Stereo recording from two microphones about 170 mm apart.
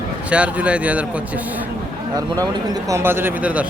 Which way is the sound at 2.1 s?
20° right (ahead or behind).